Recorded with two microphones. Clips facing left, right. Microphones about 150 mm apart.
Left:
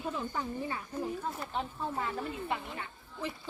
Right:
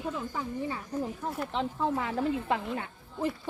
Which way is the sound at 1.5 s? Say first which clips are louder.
Right 8 dB; 85° right.